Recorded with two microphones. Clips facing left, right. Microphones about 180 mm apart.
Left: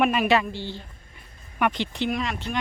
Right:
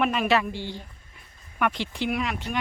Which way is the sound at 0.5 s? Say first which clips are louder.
Even; 15° right (ahead or behind).